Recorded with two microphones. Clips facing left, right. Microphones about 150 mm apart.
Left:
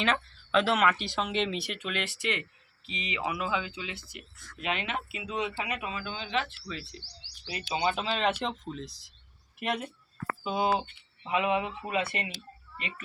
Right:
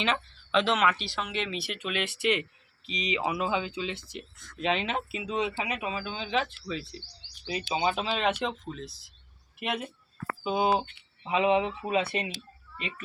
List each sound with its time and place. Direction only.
0.0 s speech: 5° left (ahead or behind)
1.0 s speech: 20° left (ahead or behind)
1.6 s speech: 15° right (ahead or behind)